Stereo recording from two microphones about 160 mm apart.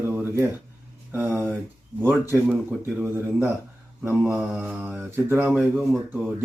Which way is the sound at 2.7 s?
15° right (ahead or behind).